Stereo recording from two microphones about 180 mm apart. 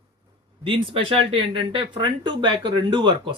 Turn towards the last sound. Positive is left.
turn(degrees=-25)  # may be behind; listen again after turning